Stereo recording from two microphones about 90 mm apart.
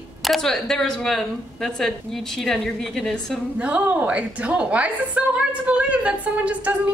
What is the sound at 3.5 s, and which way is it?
A woman's voice, 15° right (ahead or behind).